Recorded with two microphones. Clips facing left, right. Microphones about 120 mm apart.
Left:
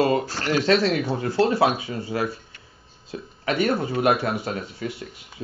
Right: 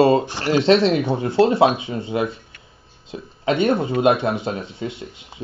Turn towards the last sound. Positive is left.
turn(degrees=-25)  # may be behind; listen again after turning